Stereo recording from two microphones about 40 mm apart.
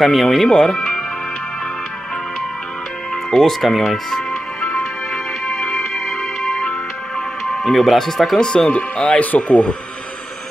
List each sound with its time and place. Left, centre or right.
0.0 s speech: centre
3.3 s speech: centre
4.1 s music: centre
7.4 s speech: centre
8.4 s speech: centre